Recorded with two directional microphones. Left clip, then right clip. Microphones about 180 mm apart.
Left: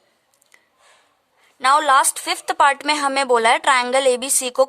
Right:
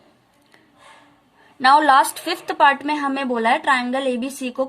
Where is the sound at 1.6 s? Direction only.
35° left (ahead or behind); by 4.7 s 55° left (ahead or behind).